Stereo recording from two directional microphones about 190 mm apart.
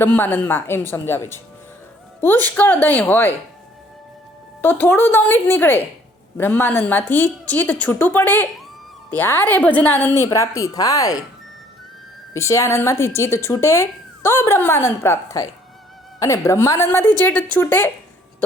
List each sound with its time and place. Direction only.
0.0 s speech: 10° left (ahead or behind)
4.6 s speech: 10° left (ahead or behind)
12.3 s speech: 15° left (ahead or behind)